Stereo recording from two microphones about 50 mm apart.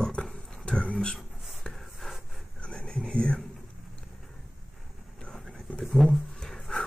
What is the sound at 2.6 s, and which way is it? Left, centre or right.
Whispering, left.